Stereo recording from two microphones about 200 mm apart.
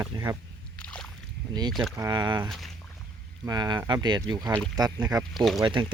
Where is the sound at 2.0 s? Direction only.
20° right (ahead or behind).